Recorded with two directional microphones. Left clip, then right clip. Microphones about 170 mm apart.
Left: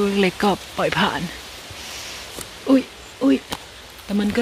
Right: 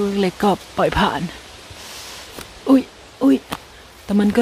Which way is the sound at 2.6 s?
25° right (ahead or behind).